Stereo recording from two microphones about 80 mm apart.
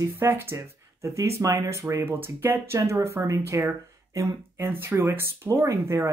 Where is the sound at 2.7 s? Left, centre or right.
Right.